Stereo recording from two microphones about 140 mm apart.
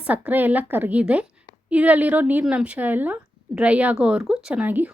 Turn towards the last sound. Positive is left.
turn(degrees=-10)  # may be behind; listen again after turning